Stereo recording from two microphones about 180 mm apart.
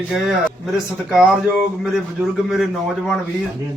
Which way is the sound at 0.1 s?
Centre (ahead or behind).